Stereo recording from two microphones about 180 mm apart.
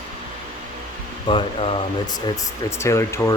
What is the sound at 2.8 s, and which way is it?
Speech, 15° left (ahead or behind).